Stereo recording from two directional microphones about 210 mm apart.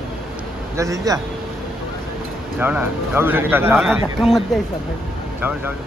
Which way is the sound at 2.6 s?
10° right (ahead or behind).